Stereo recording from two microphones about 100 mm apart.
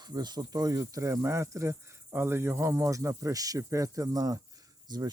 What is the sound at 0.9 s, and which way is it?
Cricket, 35° right (ahead or behind).